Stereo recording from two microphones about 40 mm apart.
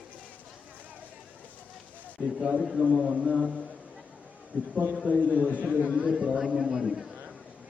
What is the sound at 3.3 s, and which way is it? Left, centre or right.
Speech, centre.